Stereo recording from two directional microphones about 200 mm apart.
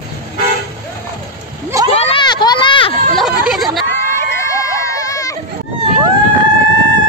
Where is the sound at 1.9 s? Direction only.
30° left (ahead or behind).